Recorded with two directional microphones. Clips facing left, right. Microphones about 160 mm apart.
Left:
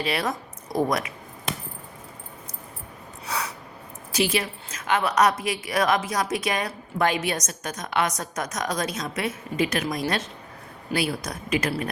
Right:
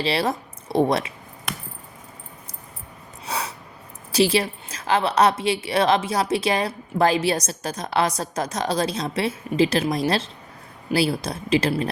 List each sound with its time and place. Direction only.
0.0 s speech: 30° right (ahead or behind)
3.2 s snort: 25° right (ahead or behind)
4.1 s a woman's voice: 35° right (ahead or behind)